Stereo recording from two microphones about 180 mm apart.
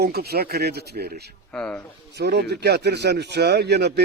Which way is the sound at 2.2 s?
65° right (ahead or behind).